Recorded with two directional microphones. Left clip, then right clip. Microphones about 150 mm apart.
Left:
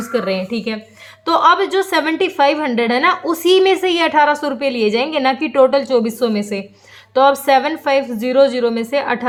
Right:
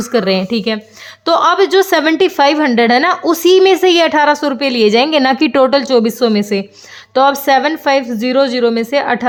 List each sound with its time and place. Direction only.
0.0 s a woman's voice: 55° right (ahead or behind)
1.2 s a woman's voice: 45° right (ahead or behind)